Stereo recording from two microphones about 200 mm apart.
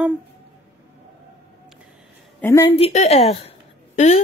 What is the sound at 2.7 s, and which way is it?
A woman's voice, 30° left (ahead or behind).